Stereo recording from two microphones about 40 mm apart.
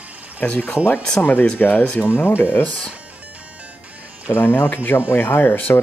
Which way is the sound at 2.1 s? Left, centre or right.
Left.